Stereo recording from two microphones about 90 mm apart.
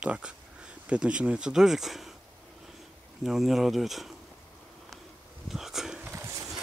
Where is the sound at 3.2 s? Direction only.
Centre (ahead or behind).